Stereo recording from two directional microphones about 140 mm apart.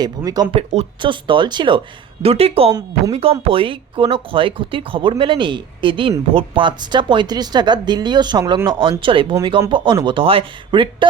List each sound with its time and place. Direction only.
0.2 s speech: 25° right (ahead or behind)
0.5 s speech: 50° right (ahead or behind)
1.0 s speech: 35° right (ahead or behind)
2.2 s speech: 45° right (ahead or behind)